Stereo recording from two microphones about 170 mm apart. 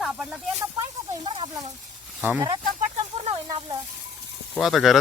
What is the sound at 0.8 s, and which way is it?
Speech, 30° right (ahead or behind).